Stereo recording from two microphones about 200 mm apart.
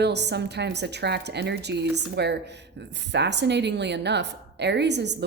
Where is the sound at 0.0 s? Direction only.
55° right (ahead or behind).